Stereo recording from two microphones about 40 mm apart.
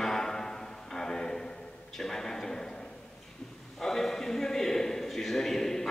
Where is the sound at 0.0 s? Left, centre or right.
Centre.